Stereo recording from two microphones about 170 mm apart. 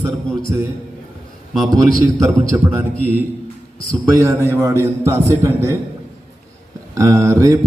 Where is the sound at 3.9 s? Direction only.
15° right (ahead or behind).